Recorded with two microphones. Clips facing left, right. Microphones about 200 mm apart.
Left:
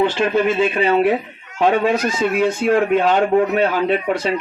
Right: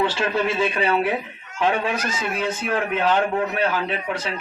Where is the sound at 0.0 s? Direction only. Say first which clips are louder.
Left 5 dB; 25° left (ahead or behind).